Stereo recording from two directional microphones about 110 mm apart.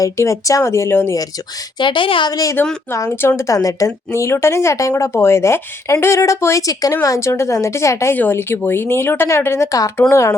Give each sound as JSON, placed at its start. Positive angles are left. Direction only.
{"t": 0.0, "sound": "a woman's voice", "side_deg": 30}
{"t": 1.8, "sound": "a woman's voice", "side_deg": 50}
{"t": 2.3, "sound": "a woman's voice", "side_deg": 30}